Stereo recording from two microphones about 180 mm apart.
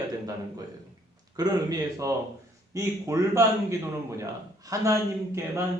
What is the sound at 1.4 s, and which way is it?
A man's voice, 20° right (ahead or behind).